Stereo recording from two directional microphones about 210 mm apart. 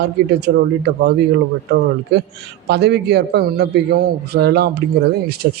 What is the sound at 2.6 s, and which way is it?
Speech, 50° right (ahead or behind).